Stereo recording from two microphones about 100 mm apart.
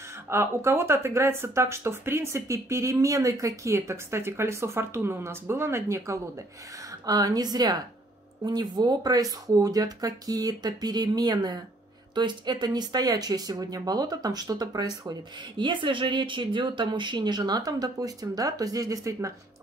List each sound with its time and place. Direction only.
0.1 s speech: 25° right (ahead or behind)